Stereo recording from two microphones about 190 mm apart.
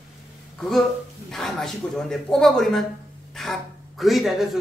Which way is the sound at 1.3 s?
Centre (ahead or behind).